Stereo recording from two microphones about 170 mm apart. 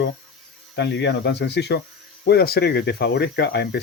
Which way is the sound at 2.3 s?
65° left (ahead or behind).